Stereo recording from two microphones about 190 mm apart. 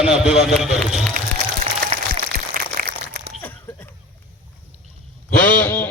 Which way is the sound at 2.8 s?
50° right (ahead or behind).